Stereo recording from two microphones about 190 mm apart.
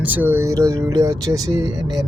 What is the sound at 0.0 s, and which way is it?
Speech, 10° right (ahead or behind).